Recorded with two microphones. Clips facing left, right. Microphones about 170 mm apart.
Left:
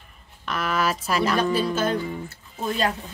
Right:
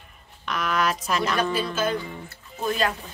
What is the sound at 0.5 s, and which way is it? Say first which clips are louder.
Speech: even; 5° left (ahead or behind).